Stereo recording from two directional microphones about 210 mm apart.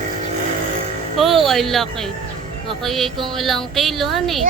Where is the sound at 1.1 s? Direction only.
Centre (ahead or behind).